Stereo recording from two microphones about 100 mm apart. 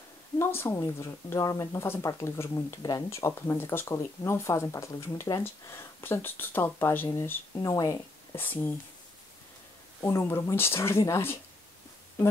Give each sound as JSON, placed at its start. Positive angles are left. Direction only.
{"t": 0.4, "sound": "speech", "side_deg": 25}
{"t": 7.5, "sound": "speech", "side_deg": 35}
{"t": 8.4, "sound": "speech", "side_deg": 20}
{"t": 10.0, "sound": "speech", "side_deg": 25}